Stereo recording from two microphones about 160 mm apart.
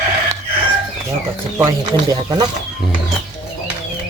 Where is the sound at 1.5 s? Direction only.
20° right (ahead or behind).